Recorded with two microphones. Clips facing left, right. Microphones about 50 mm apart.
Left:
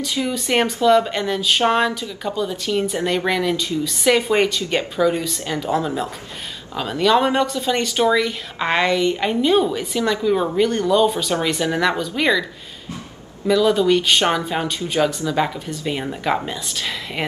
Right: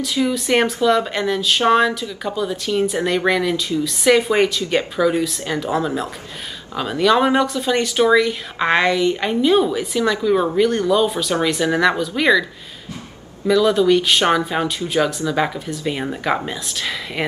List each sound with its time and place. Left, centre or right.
0.0 s speech: centre
13.5 s speech: centre